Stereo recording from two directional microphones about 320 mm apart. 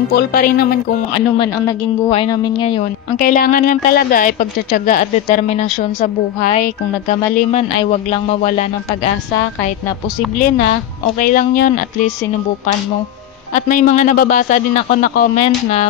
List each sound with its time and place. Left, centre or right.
0.1 s a woman's voice: left
1.4 s a woman's voice: centre
11.1 s a woman's voice: left
13.6 s a woman's voice: left